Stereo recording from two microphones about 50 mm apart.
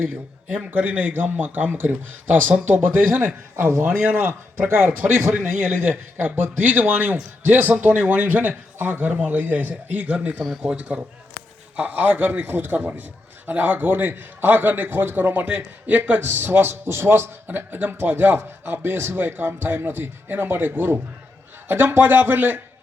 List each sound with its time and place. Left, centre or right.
0.7 s speech: right
5.3 s a man's voice: centre
5.9 s speech: right
11.8 s speech: right
16.2 s a man's voice: right